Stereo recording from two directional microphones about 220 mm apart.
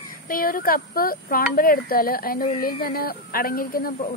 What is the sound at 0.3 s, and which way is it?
Speech, 40° left (ahead or behind).